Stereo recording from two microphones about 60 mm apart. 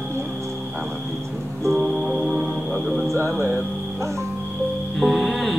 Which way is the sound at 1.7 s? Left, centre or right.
Centre.